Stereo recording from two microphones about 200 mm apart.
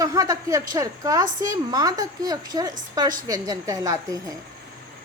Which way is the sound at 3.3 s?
20° right (ahead or behind).